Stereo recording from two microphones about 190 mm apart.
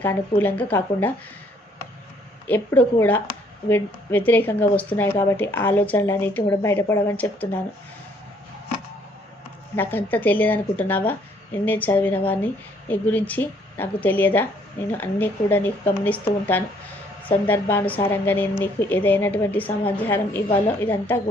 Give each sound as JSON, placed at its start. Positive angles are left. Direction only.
{"t": 0.0, "sound": "speech", "side_deg": 10}
{"t": 2.5, "sound": "speech", "side_deg": 10}
{"t": 9.7, "sound": "speech", "side_deg": 10}